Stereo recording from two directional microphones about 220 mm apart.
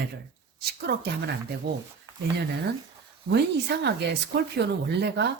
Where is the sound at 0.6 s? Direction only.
45° right (ahead or behind).